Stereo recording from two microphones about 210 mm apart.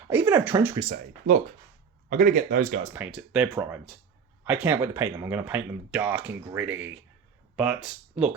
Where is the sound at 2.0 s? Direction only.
40° right (ahead or behind).